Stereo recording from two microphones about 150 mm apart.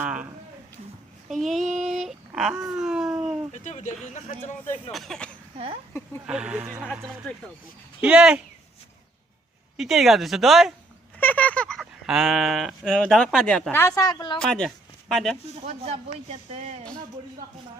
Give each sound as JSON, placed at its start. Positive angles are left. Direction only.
{"t": 0.0, "sound": "a sound", "side_deg": -5}
{"t": 1.3, "sound": "a sound", "side_deg": 0}
{"t": 3.6, "sound": "speech", "side_deg": 55}
{"t": 4.9, "sound": "speech", "side_deg": 0}
{"t": 6.2, "sound": "speech", "side_deg": -5}
{"t": 7.3, "sound": "speech", "side_deg": 10}
{"t": 8.0, "sound": "speech", "side_deg": -5}
{"t": 9.7, "sound": "speech", "side_deg": 0}
{"t": 11.2, "sound": "speech", "side_deg": 10}
{"t": 14.3, "sound": "speech", "side_deg": 5}
{"t": 15.6, "sound": "speech", "side_deg": -45}